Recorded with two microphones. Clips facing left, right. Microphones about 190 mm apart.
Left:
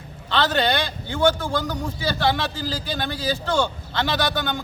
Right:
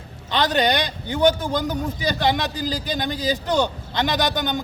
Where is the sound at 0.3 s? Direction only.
15° right (ahead or behind).